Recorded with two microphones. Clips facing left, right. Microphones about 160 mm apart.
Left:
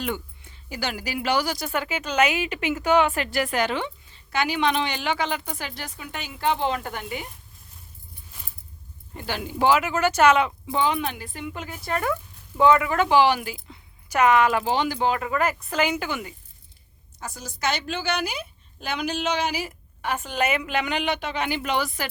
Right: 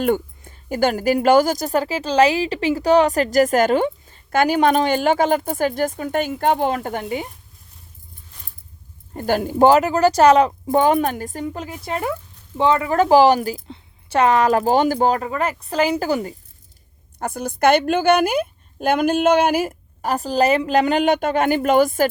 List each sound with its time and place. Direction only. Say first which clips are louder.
0.0 s a woman's voice: right 10 dB; 50° right (ahead or behind)
9.1 s a woman's voice: right 10 dB; 45° right (ahead or behind)
11.9 s speech: right 1 dB; 20° right (ahead or behind); by 16.3 s 40° right (ahead or behind)
17.2 s a woman's voice: right 12 dB; 55° right (ahead or behind)